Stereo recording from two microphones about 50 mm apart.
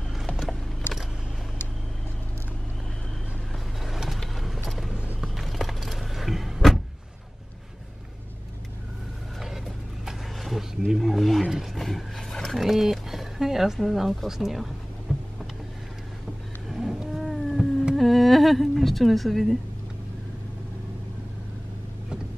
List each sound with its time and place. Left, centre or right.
3.8 s vehicle: centre
4.9 s a sound: right
5.3 s vehicle: centre
10.0 s vehicle: centre
10.9 s wild animals: centre
11.6 s roaring cats: centre
12.5 s a sound: centre
15.1 s vehicle: centre
16.6 s cat: centre
17.9 s a woman's voice: centre